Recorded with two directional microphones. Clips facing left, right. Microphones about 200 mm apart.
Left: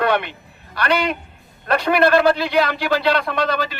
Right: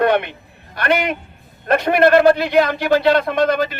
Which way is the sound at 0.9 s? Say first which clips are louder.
Right 2 dB; 20° right (ahead or behind).